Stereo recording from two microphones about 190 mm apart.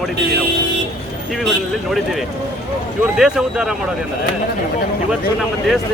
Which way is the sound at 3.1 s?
5° right (ahead or behind).